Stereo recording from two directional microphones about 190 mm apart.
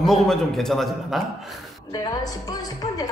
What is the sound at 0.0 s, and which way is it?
Speech, centre (ahead or behind).